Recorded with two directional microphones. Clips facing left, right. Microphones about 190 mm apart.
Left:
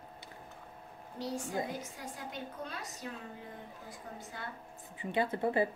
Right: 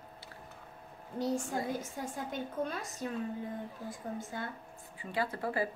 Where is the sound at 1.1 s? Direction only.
50° right (ahead or behind).